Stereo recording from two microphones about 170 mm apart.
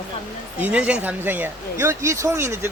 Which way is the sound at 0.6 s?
10° right (ahead or behind).